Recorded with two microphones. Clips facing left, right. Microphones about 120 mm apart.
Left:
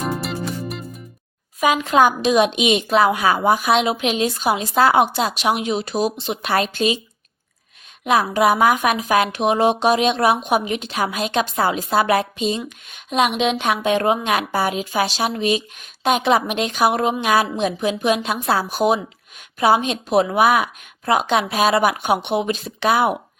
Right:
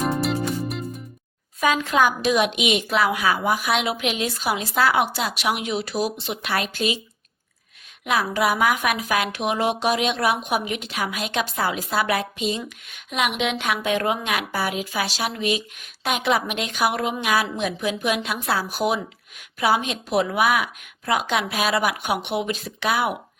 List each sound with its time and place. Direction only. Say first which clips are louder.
0.0 s music: right 2 dB; centre (ahead or behind)
1.6 s speech: left 4 dB; 20° left (ahead or behind)
8.0 s speech: left 5 dB; 25° left (ahead or behind)